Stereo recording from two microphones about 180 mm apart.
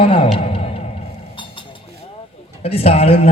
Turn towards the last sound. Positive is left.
turn(degrees=35)  # may be behind; listen again after turning